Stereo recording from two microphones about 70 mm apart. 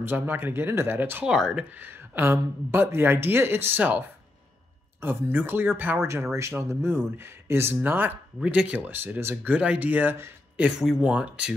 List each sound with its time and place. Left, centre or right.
0.0 s speech: right
1.2 s speech: centre
1.8 s speech: right
5.0 s speech: right
6.0 s speech: right
8.4 s speech: centre
8.6 s speech: right